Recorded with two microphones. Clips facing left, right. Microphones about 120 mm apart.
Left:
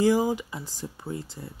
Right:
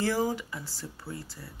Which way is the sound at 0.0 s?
15° left (ahead or behind).